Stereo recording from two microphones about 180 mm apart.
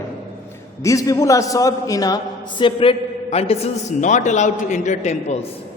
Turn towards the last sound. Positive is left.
turn(degrees=40)  # may be behind; listen again after turning